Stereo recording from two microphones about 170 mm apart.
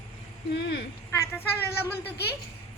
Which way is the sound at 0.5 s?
85° left.